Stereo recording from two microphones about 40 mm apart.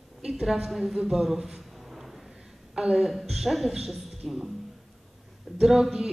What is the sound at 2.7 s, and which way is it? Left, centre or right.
A woman's voice, centre.